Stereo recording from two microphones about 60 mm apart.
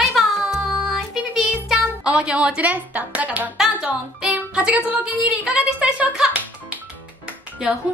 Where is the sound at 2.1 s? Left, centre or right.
Centre.